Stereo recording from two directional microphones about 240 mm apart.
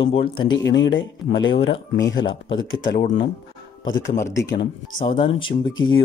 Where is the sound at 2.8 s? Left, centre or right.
Left.